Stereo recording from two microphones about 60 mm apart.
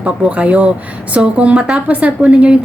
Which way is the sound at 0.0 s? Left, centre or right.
Right.